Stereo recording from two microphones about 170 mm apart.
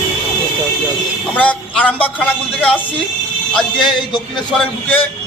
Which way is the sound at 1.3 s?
10° left (ahead or behind).